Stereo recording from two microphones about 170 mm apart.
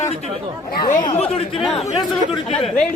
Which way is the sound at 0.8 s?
50° left (ahead or behind).